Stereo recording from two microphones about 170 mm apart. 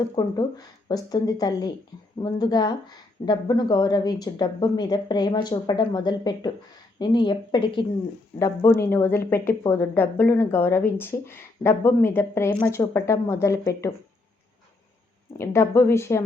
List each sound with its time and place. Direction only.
0.2 s speech: 25° left (ahead or behind)
8.4 s speech: 20° left (ahead or behind)
15.4 s speech: 15° left (ahead or behind)